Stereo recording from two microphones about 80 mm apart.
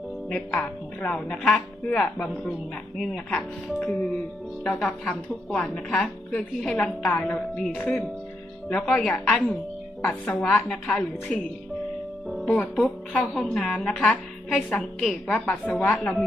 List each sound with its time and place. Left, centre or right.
0.3 s a woman's voice: centre
1.9 s a woman's voice: centre
12.5 s a woman's voice: centre